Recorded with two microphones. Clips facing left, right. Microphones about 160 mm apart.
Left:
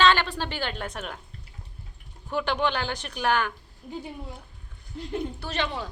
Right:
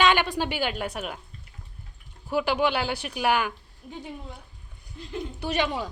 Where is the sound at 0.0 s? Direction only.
15° right (ahead or behind).